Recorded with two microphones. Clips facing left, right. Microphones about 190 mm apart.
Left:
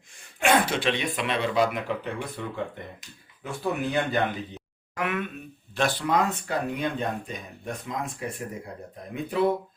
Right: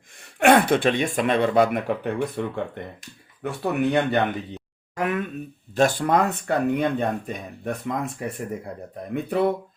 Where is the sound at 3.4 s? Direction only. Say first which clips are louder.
Right 5 dB; 65° right (ahead or behind).